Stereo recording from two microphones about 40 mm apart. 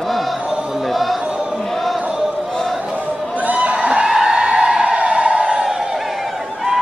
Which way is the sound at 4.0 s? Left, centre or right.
Centre.